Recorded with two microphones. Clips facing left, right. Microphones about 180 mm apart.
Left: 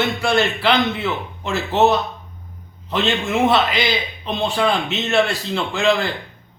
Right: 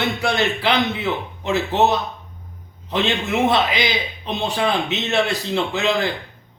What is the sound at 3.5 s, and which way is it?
A man's voice, 15° right (ahead or behind).